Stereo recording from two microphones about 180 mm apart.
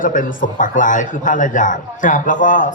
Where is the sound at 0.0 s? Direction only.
45° left (ahead or behind).